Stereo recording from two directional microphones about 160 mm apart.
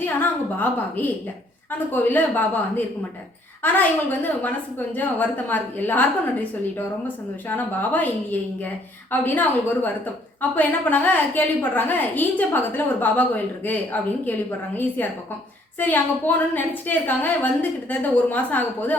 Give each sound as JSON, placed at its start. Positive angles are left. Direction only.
{"t": 0.0, "sound": "a woman's voice", "side_deg": 10}
{"t": 7.4, "sound": "a woman's voice", "side_deg": 10}
{"t": 15.8, "sound": "a woman's voice", "side_deg": 10}